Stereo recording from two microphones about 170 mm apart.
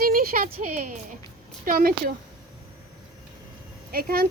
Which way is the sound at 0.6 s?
50° right (ahead or behind).